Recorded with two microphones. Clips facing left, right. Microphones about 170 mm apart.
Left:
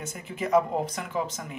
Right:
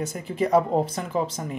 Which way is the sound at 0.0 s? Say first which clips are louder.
Right 7 dB; 35° right (ahead or behind).